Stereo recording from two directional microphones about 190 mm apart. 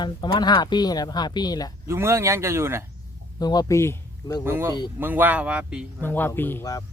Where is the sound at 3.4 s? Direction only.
20° left (ahead or behind).